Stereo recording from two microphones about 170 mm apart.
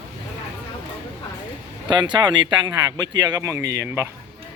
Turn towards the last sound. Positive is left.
turn(degrees=-15)  # may be behind; listen again after turning